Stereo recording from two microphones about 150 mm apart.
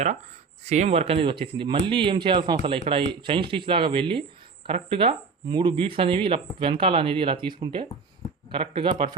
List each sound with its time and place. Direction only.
0.6 s speech: 50° right (ahead or behind)